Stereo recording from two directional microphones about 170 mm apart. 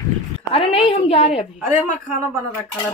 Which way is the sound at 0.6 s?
30° left (ahead or behind).